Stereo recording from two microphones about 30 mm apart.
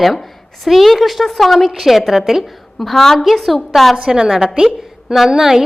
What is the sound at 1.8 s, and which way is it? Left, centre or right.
Speech, centre.